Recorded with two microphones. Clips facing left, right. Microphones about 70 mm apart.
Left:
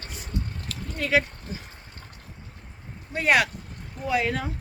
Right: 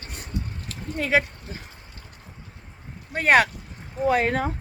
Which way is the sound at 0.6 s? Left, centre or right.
Right.